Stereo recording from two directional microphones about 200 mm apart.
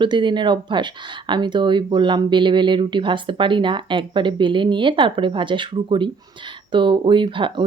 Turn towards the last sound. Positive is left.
turn(degrees=-25)  # may be behind; listen again after turning